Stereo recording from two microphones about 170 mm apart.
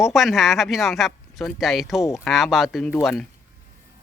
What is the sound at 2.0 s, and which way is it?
Speech, 15° left (ahead or behind).